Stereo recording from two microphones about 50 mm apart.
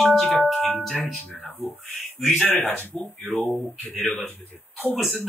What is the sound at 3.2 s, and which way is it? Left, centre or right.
Speech, centre.